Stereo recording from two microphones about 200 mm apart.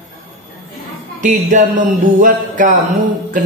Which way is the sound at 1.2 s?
40° right (ahead or behind).